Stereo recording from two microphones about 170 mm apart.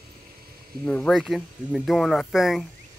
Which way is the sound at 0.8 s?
5° left (ahead or behind).